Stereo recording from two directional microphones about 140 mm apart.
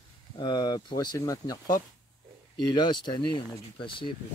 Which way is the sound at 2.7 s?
30° left (ahead or behind).